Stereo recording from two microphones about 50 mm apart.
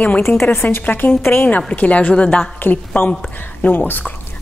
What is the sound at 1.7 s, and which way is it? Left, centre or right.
A woman's voice, left.